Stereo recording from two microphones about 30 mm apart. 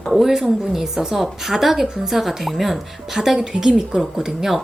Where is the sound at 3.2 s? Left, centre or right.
Centre.